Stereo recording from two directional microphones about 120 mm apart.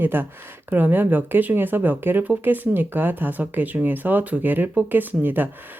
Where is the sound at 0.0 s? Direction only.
15° right (ahead or behind).